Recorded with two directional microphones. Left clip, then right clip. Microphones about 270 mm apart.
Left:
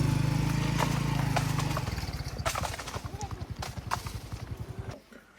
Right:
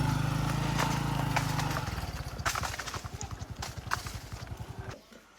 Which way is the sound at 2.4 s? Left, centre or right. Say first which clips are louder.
Even; centre.